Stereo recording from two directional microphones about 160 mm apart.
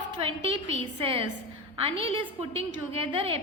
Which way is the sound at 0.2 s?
35° right (ahead or behind).